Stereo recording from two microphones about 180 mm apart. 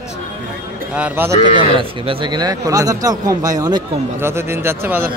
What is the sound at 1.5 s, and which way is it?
Speech, 25° right (ahead or behind).